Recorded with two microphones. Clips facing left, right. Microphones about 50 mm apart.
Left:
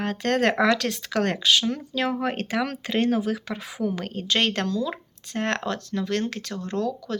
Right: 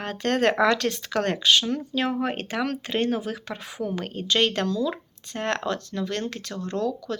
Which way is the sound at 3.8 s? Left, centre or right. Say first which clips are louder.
Left 1 dB; left.